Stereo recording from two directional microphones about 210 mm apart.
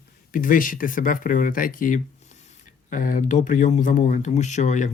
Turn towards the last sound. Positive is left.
turn(degrees=35)  # may be behind; listen again after turning